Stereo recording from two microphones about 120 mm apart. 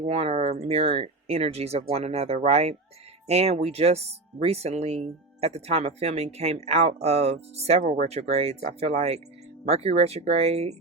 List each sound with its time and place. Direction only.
0.1 s speech: 60° right (ahead or behind)